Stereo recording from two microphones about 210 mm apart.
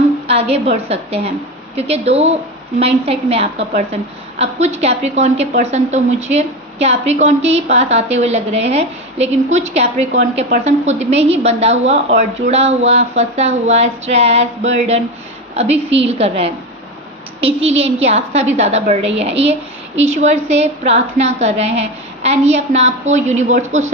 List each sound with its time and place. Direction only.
0.3 s a woman's voice: 30° right (ahead or behind)